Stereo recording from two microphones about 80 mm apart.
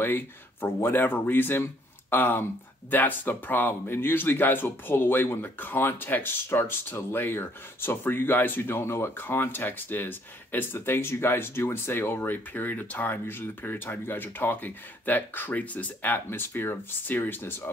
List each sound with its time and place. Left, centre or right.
0.0 s speech: left